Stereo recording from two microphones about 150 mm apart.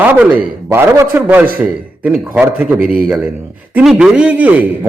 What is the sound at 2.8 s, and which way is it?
Speech, 80° right.